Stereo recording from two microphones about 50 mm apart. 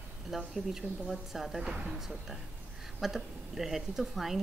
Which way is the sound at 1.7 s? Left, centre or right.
Centre.